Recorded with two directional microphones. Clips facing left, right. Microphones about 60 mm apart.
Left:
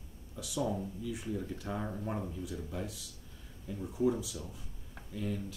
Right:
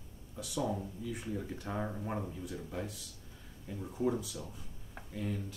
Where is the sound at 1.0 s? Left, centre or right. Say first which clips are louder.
Left 1 dB; right.